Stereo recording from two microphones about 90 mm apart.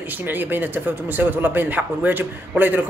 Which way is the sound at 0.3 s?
20° right (ahead or behind).